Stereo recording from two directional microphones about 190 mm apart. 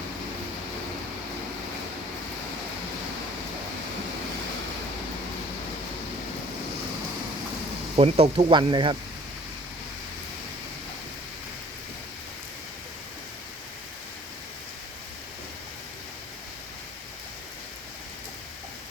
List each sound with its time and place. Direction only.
7.9 s speech: 35° right (ahead or behind)